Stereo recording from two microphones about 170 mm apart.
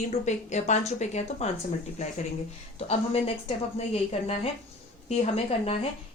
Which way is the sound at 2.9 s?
35° left (ahead or behind).